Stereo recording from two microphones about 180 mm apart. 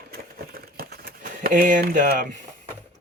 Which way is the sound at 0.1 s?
55° right (ahead or behind).